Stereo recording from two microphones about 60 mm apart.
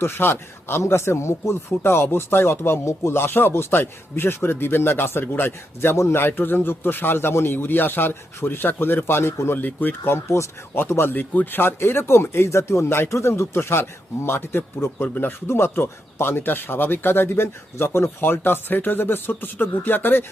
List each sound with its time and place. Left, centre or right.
0.0 s a man's voice: left
9.6 s a man's voice: left
13.1 s a man's voice: left